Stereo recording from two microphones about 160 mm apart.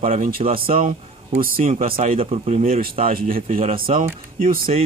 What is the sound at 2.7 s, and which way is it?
Speech, 60° right (ahead or behind).